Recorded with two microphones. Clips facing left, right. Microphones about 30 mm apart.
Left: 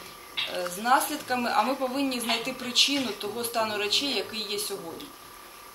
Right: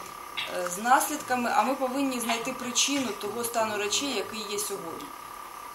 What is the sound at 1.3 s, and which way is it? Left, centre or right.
Speech, left.